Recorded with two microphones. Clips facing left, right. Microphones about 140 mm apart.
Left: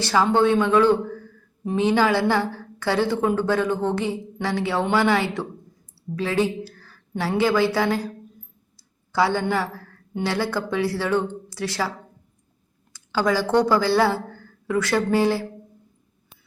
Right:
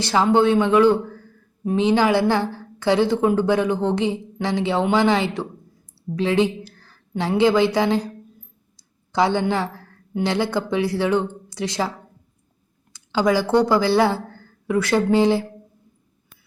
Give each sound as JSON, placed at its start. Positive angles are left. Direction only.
{"t": 0.0, "sound": "a woman's voice", "side_deg": -15}
{"t": 9.1, "sound": "a woman's voice", "side_deg": -20}
{"t": 12.9, "sound": "a woman's voice", "side_deg": -15}